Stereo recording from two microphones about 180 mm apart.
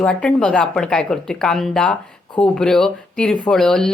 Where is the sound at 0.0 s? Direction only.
5° left (ahead or behind).